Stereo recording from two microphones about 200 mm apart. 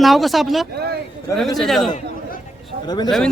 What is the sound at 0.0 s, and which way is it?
Speech, centre (ahead or behind).